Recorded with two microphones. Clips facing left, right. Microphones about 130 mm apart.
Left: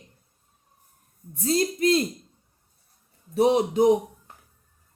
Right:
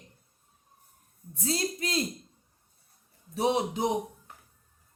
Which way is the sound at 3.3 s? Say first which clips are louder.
Left 7 dB; 50° left (ahead or behind).